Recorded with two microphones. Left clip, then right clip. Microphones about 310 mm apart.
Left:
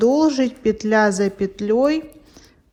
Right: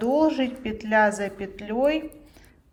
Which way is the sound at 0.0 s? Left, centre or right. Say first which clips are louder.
Left 5 dB; left.